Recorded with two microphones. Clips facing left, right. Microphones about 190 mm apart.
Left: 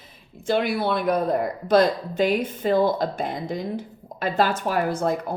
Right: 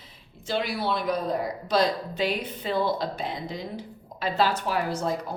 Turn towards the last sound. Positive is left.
turn(degrees=55)  # may be behind; listen again after turning